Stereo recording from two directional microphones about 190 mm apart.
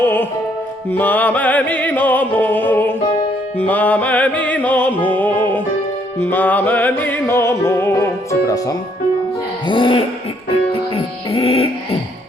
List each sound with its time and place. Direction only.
0.0 s music: 10° left (ahead or behind); by 11.7 s 30° left (ahead or behind)